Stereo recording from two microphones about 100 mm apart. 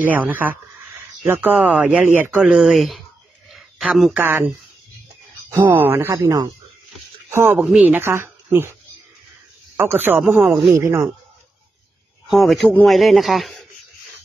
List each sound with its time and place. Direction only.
0.0 s speech: 20° right (ahead or behind); by 3.0 s centre (ahead or behind)
3.4 s a sound: 5° right (ahead or behind)
4.1 s speech: 20° right (ahead or behind)
5.6 s speech: 20° right (ahead or behind); by 6.5 s 35° right (ahead or behind)
7.2 s a woman's voice: 20° right (ahead or behind)
9.8 s speech: 20° right (ahead or behind)
12.3 s a man's voice: centre (ahead or behind)